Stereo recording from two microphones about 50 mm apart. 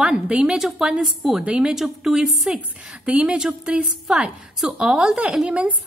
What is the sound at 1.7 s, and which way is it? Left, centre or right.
A woman's voice, centre.